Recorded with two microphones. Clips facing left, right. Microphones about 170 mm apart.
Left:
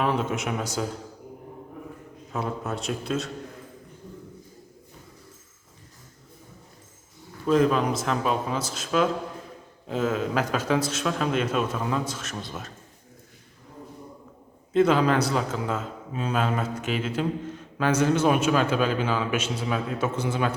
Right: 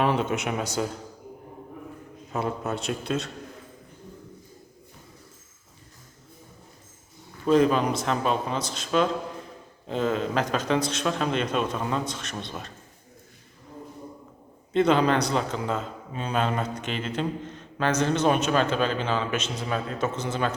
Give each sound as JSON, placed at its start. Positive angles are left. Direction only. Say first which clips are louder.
{"t": 0.0, "sound": "a man's voice", "louder": "right 1 dB", "side_deg": 0}
{"t": 2.3, "sound": "a man's voice", "louder": "right 1 dB", "side_deg": 0}
{"t": 7.4, "sound": "a man's voice", "louder": "right 1 dB", "side_deg": 0}
{"t": 14.7, "sound": "a man's voice", "louder": "left 1 dB", "side_deg": 5}